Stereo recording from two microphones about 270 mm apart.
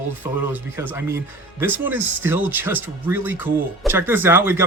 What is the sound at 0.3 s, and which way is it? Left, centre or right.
Speech, centre.